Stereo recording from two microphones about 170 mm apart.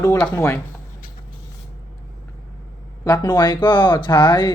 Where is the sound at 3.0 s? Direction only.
20° left (ahead or behind).